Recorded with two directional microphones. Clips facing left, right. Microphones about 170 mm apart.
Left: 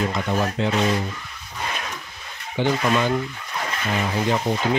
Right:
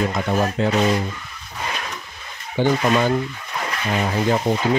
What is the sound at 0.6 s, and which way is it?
Speech, 40° right (ahead or behind).